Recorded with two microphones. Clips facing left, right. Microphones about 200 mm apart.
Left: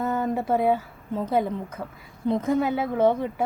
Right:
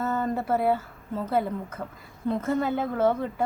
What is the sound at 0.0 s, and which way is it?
A woman's voice, 15° left (ahead or behind).